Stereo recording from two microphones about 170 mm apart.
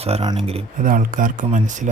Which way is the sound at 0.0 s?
30° right (ahead or behind).